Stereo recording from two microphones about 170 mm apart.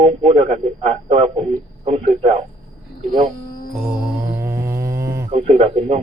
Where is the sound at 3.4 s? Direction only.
60° left (ahead or behind).